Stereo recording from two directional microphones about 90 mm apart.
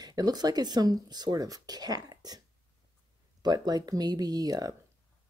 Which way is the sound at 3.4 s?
50° right (ahead or behind).